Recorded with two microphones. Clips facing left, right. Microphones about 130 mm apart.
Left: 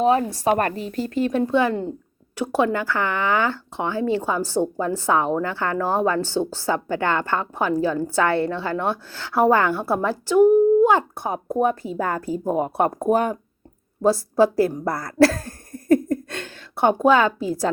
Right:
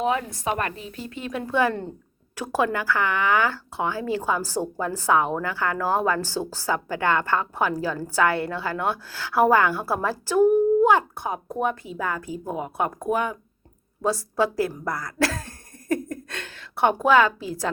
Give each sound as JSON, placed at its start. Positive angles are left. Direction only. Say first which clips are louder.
{"t": 0.0, "sound": "speech", "louder": "left 6 dB", "side_deg": 35}
{"t": 1.3, "sound": "speech", "louder": "left 1 dB", "side_deg": 25}
{"t": 14.0, "sound": "speech", "louder": "left 6 dB", "side_deg": 30}